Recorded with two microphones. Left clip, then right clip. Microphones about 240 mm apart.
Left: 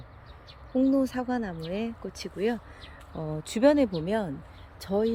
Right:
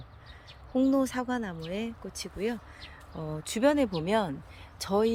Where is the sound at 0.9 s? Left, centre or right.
Centre.